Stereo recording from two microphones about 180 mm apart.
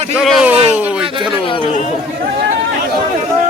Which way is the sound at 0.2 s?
5° right (ahead or behind).